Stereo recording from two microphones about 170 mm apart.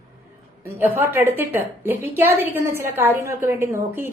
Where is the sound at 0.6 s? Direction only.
15° right (ahead or behind).